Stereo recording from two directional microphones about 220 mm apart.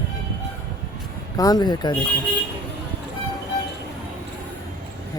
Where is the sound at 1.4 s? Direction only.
15° left (ahead or behind).